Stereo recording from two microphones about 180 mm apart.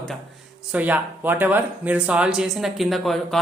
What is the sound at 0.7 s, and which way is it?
A woman's voice, 10° right (ahead or behind).